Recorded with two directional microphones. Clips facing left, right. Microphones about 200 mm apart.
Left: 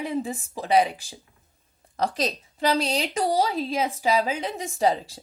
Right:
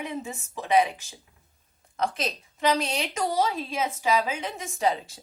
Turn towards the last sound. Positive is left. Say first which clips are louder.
# left 3 dB
turn(degrees=35)  # may be behind; listen again after turning